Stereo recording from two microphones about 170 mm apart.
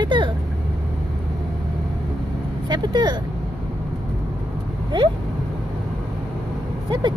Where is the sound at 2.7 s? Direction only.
25° right (ahead or behind).